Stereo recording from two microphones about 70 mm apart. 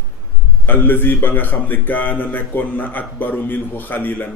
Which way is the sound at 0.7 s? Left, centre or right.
Left.